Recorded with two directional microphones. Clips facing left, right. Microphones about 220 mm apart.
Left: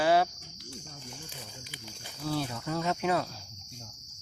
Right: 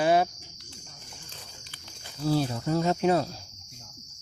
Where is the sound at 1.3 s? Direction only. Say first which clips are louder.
Left 4 dB; 10° left (ahead or behind).